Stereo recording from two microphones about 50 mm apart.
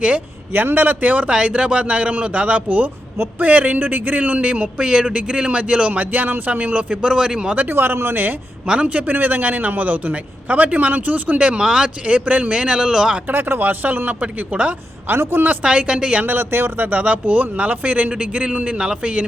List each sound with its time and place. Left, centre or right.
0.5 s speech: right
1.3 s a man's voice: centre
7.7 s speech: right
8.6 s a man's voice: right
13.2 s speech: right
15.0 s speech: right
15.6 s a man's voice: right
16.2 s a man's voice: right; by 19.2 s centre